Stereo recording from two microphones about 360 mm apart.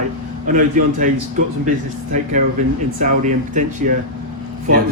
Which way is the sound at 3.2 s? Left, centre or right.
Right.